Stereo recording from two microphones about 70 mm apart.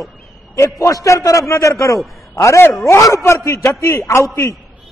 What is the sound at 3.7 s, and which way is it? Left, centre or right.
Speech, left.